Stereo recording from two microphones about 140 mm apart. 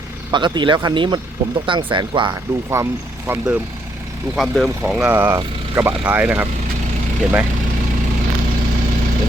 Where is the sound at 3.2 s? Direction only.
10° right (ahead or behind).